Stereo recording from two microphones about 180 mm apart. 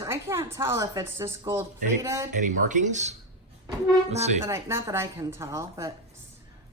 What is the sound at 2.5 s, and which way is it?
Speech, 45° right (ahead or behind).